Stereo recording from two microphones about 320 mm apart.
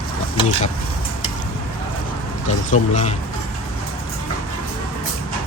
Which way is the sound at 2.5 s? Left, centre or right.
Left.